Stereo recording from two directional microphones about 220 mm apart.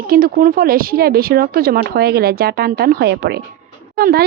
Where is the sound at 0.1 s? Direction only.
40° right (ahead or behind).